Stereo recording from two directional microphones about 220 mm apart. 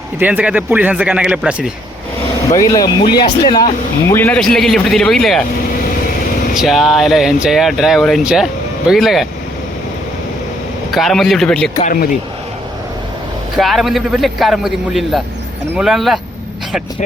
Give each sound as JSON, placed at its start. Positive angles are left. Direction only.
{"t": 0.2, "sound": "speech", "side_deg": -5}
{"t": 2.6, "sound": "speech", "side_deg": 15}
{"t": 4.1, "sound": "speech", "side_deg": 10}
{"t": 6.6, "sound": "speech", "side_deg": 0}
{"t": 10.9, "sound": "speech", "side_deg": 0}
{"t": 11.8, "sound": "speech", "side_deg": 35}
{"t": 13.6, "sound": "speech", "side_deg": 0}